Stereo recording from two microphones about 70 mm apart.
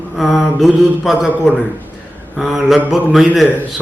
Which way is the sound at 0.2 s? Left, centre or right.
Centre.